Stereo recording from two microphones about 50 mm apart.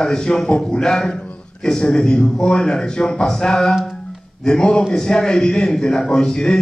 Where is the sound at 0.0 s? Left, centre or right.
Centre.